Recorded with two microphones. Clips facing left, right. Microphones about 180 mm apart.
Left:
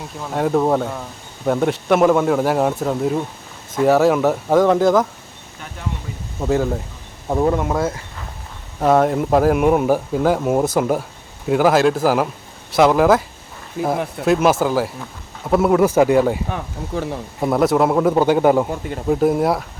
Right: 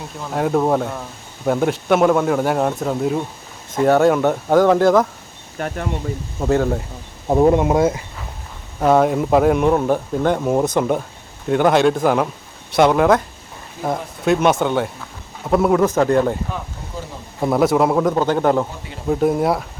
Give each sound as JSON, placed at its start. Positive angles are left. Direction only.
{"t": 0.2, "sound": "speech", "side_deg": 0}
{"t": 5.5, "sound": "speech", "side_deg": -60}
{"t": 6.4, "sound": "speech", "side_deg": 0}
{"t": 7.3, "sound": "speech", "side_deg": -20}
{"t": 8.8, "sound": "speech", "side_deg": 0}
{"t": 16.5, "sound": "speech", "side_deg": 70}
{"t": 17.4, "sound": "speech", "side_deg": 0}
{"t": 18.1, "sound": "speech", "side_deg": 10}